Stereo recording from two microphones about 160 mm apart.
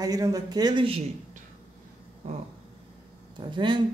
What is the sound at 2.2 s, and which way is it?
Speech, 45° right (ahead or behind).